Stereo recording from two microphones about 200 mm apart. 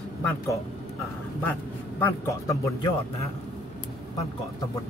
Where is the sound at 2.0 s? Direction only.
15° left (ahead or behind).